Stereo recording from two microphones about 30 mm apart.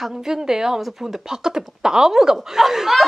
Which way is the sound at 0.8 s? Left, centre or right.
Centre.